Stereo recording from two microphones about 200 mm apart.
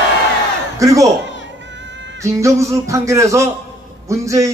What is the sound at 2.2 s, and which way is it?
A man's voice, 15° right (ahead or behind).